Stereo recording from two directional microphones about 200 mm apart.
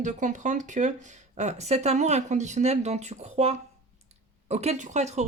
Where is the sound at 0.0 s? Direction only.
40° right (ahead or behind).